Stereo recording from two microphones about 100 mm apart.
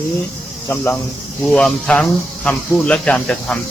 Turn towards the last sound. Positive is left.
turn(degrees=10)  # may be behind; listen again after turning